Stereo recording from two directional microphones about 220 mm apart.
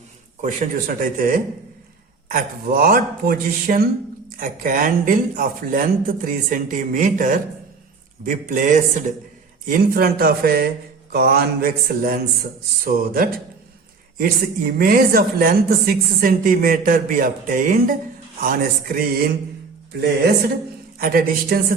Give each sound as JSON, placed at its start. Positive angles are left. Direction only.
{"t": 0.4, "sound": "a woman's voice", "side_deg": -40}
{"t": 21.0, "sound": "a woman's voice", "side_deg": -40}